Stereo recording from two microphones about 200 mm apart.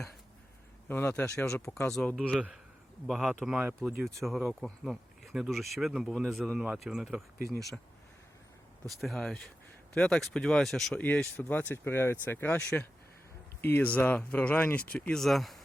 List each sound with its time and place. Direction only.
0.9 s speech: 10° left (ahead or behind)
8.9 s speech: centre (ahead or behind)